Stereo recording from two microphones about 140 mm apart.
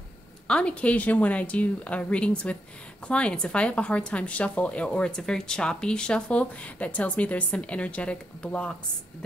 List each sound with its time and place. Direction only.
0.5 s speech: 10° left (ahead or behind)